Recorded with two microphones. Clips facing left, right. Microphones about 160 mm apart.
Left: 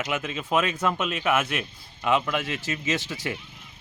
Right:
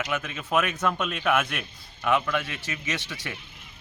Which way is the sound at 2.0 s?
20° left (ahead or behind).